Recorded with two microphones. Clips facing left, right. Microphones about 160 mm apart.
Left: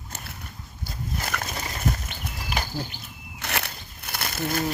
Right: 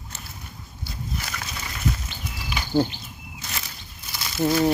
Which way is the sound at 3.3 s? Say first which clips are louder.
Left 7 dB; 65° left (ahead or behind).